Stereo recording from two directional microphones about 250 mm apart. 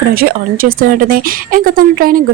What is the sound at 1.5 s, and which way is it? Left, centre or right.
Speech, right.